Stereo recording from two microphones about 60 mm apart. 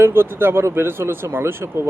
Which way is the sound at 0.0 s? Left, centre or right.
Right.